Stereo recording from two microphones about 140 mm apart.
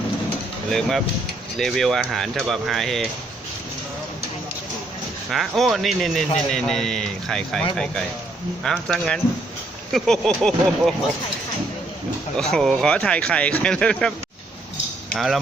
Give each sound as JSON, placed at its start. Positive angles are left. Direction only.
{"t": 0.7, "sound": "speech", "side_deg": 0}
{"t": 5.3, "sound": "speech", "side_deg": 0}
{"t": 8.6, "sound": "speech", "side_deg": 5}
{"t": 12.4, "sound": "speech", "side_deg": 5}
{"t": 15.1, "sound": "speech", "side_deg": 0}